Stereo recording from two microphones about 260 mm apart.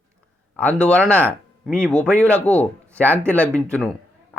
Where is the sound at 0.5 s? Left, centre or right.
Centre.